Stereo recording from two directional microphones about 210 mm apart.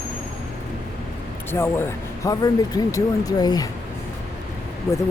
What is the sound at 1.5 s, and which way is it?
Speech, 10° left (ahead or behind).